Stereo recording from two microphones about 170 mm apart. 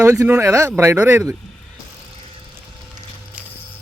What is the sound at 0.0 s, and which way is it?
Speech, 20° right (ahead or behind).